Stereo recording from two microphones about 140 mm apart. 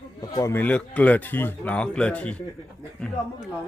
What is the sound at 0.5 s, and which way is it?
Speech, 10° left (ahead or behind).